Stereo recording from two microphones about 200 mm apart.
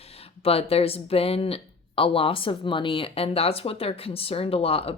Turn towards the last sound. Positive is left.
turn(degrees=30)  # may be behind; listen again after turning